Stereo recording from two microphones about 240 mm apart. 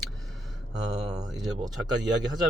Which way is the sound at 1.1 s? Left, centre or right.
Centre.